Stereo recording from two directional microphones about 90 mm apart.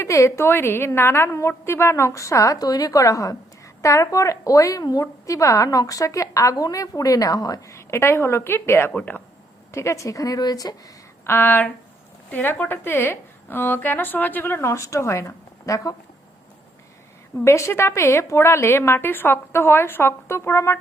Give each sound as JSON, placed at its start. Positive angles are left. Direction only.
{"t": 0.0, "sound": "a woman's voice", "side_deg": 35}
{"t": 8.9, "sound": "speech", "side_deg": 15}
{"t": 9.7, "sound": "a woman's voice", "side_deg": 35}
{"t": 11.3, "sound": "a woman's voice", "side_deg": 20}
{"t": 17.4, "sound": "a woman's voice", "side_deg": 30}